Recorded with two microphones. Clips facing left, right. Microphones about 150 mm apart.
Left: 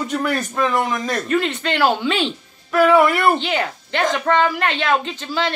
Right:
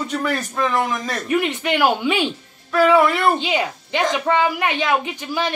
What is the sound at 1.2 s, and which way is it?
A woman's voice, 15° right (ahead or behind).